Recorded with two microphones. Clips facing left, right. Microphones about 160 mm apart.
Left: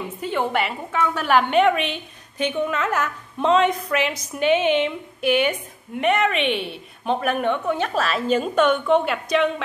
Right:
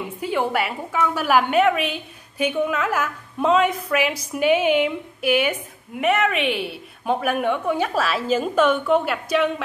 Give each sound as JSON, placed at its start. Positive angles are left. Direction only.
{"t": 0.2, "sound": "a woman's voice", "side_deg": -10}